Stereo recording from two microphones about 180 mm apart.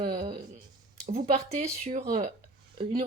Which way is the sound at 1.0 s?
35° right (ahead or behind).